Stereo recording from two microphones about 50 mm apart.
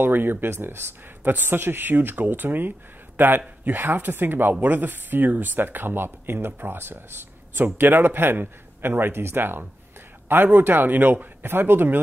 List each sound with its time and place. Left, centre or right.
0.0 s speech: right